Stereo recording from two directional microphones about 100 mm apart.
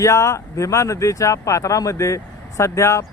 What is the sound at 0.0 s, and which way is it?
Speech, 30° left (ahead or behind).